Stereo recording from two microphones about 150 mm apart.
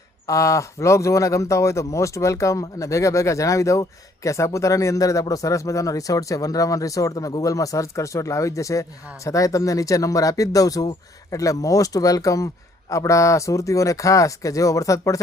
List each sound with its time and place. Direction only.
0.3 s speech: 20° left (ahead or behind)